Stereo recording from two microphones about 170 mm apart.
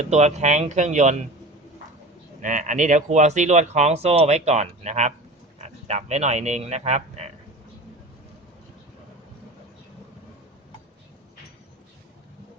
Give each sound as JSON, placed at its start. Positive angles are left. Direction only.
{"t": 0.0, "sound": "speech", "side_deg": -40}
{"t": 2.4, "sound": "a man's voice", "side_deg": -45}